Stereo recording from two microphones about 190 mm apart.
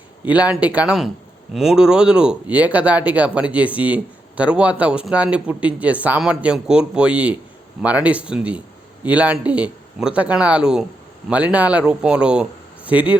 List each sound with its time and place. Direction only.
0.3 s speech: 10° right (ahead or behind)